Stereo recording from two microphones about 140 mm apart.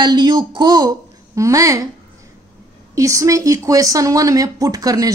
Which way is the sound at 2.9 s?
20° right (ahead or behind).